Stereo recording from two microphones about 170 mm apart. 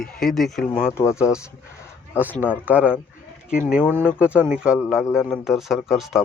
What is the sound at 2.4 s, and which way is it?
Speech, 10° right (ahead or behind).